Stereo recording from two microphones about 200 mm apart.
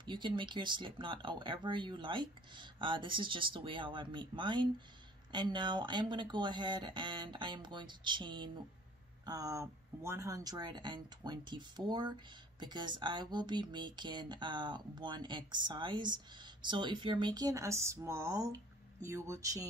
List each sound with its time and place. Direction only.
0.0 s speech: 25° right (ahead or behind)